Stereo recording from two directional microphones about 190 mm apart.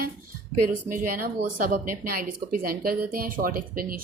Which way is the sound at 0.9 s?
45° right (ahead or behind).